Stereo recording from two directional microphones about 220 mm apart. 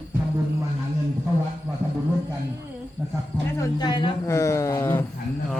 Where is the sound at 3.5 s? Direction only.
20° left (ahead or behind).